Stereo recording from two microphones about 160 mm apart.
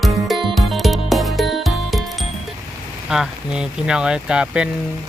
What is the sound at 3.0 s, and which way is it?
Speech, 5° right (ahead or behind).